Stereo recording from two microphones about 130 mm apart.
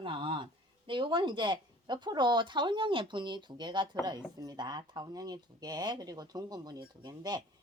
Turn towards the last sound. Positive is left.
turn(degrees=-35)  # may be behind; listen again after turning